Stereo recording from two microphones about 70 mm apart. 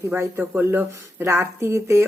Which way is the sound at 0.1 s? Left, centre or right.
Right.